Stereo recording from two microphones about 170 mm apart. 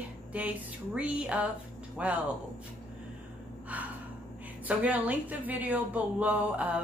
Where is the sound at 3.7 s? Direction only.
10° right (ahead or behind).